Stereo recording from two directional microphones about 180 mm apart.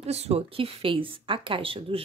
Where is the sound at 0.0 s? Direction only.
35° right (ahead or behind).